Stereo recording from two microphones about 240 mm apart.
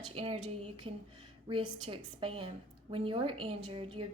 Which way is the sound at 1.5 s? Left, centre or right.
Right.